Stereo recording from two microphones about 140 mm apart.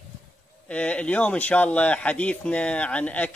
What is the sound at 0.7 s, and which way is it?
Speech, 10° left (ahead or behind).